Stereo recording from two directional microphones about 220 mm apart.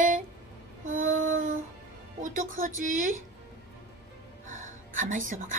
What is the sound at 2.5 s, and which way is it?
Female singing, 40° right (ahead or behind).